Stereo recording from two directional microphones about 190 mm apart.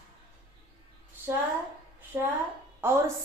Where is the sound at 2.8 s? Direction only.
15° right (ahead or behind).